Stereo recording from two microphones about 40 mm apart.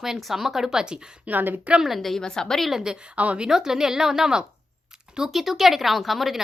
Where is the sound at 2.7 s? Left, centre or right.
Centre.